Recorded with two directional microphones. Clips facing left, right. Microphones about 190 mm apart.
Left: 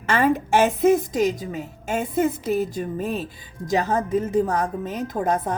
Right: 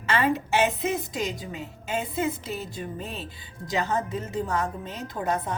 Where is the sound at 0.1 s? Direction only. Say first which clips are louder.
Left 5 dB; 50° left (ahead or behind).